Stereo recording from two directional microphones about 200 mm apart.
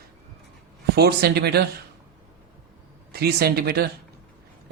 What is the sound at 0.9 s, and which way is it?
Speech, 55° right (ahead or behind).